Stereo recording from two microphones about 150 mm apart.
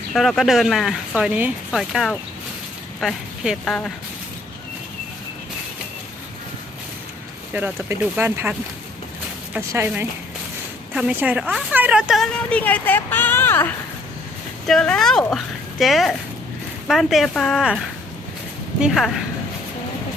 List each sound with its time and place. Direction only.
0.1 s a woman's voice: centre (ahead or behind)
7.5 s speech: 15° right (ahead or behind)
9.6 s a woman's voice: 15° right (ahead or behind); by 13.7 s 15° left (ahead or behind)
14.7 s a woman's voice: 5° left (ahead or behind)
18.8 s a woman's voice: centre (ahead or behind)